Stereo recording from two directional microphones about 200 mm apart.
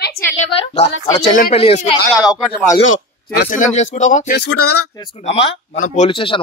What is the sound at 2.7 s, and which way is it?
Speech, 70° left (ahead or behind).